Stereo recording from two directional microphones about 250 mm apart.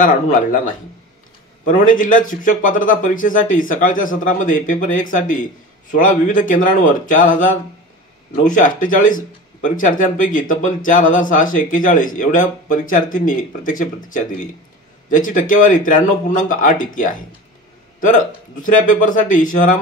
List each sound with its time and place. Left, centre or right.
0.0 s speech: left
15.0 s speech: left